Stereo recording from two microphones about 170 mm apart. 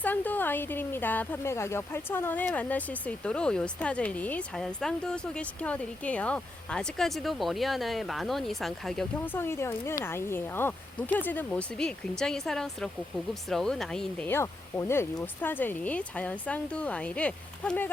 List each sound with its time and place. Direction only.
0.0 s speech: 10° left (ahead or behind)